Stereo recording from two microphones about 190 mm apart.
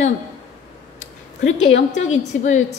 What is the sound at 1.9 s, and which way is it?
Speech, 35° left (ahead or behind).